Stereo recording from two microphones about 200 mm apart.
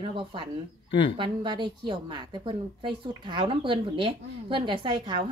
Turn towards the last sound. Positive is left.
turn(degrees=-25)  # may be behind; listen again after turning